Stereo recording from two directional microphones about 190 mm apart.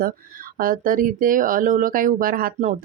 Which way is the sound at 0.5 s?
45° right (ahead or behind).